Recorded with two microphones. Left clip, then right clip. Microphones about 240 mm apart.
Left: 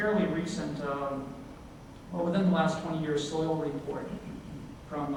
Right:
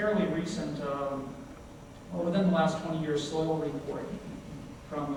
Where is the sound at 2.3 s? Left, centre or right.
Right.